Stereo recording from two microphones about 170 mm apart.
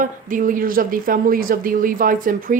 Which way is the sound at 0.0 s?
50° right (ahead or behind).